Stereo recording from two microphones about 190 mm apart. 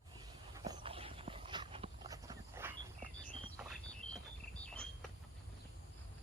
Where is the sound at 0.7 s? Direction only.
30° right (ahead or behind).